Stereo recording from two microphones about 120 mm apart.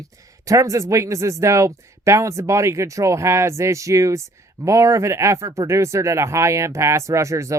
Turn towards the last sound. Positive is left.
turn(degrees=-25)  # may be behind; listen again after turning